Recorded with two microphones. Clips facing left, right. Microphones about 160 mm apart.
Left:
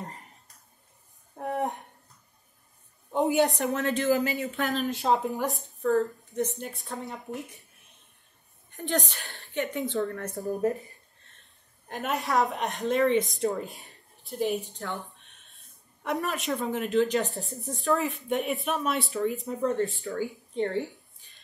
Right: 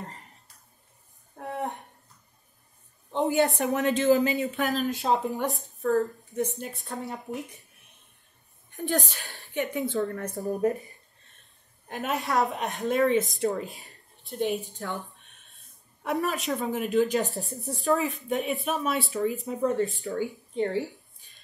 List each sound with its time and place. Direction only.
1.3 s a sound: 20° left (ahead or behind)
3.3 s a woman's voice: centre (ahead or behind)
3.6 s speech: 15° right (ahead or behind)
4.6 s speech: centre (ahead or behind)
7.2 s speech: 20° right (ahead or behind)
8.7 s speech: centre (ahead or behind)
9.3 s a woman's voice: 15° right (ahead or behind)
9.8 s a woman's voice: centre (ahead or behind)
11.9 s speech: centre (ahead or behind)
16.0 s speech: centre (ahead or behind)
19.8 s speech: 20° right (ahead or behind)
20.5 s speech: 5° right (ahead or behind)